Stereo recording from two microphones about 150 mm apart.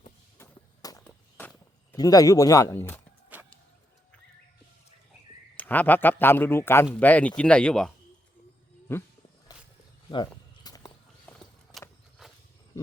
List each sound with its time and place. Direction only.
0.8 s walk: 25° left (ahead or behind)
1.4 s walk: 10° left (ahead or behind)
2.0 s speech: 25° left (ahead or behind)
5.5 s speech: 10° left (ahead or behind)
9.5 s a sound: 25° left (ahead or behind)
11.3 s vehicle: 10° left (ahead or behind)
12.2 s wild animals: centre (ahead or behind)